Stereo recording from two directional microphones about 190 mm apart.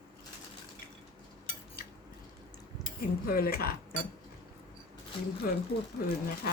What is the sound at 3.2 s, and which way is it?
Speech, 50° left (ahead or behind).